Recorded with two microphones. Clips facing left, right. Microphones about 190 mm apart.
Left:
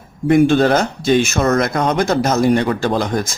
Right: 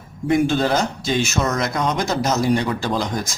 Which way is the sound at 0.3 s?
60° left (ahead or behind).